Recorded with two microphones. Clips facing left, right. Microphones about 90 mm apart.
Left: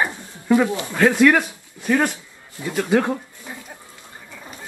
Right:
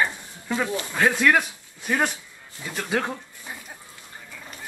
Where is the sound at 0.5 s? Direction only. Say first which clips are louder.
Left 8 dB; 20° left (ahead or behind).